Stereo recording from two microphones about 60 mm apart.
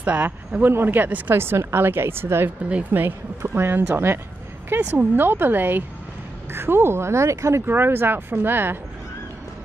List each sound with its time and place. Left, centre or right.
0.0 s speech: right
1.3 s speech: right
7.6 s speech: right